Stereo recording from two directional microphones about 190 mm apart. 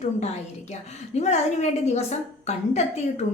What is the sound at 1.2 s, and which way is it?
A woman's voice, 35° left (ahead or behind).